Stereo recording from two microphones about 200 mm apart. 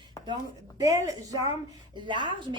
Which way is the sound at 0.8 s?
15° right (ahead or behind).